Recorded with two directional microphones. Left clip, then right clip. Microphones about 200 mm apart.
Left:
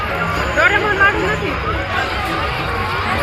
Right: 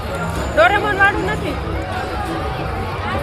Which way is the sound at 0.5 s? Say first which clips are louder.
Right 1 dB; 40° right (ahead or behind).